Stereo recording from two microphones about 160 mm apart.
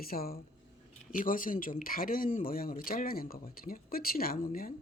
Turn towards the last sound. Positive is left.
turn(degrees=70)  # may be behind; listen again after turning